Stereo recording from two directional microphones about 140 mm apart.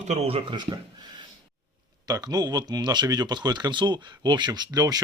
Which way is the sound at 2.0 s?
25° right (ahead or behind).